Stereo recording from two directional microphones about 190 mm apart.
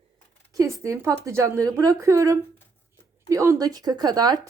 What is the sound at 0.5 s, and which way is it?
A woman's voice, 15° right (ahead or behind).